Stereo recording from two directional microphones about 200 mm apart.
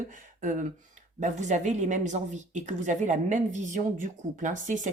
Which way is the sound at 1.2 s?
35° right (ahead or behind).